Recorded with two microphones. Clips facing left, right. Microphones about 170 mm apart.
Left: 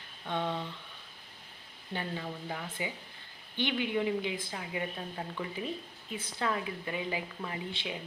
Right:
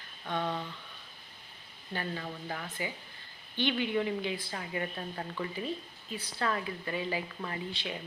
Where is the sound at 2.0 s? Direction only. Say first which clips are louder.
Even; 5° left (ahead or behind).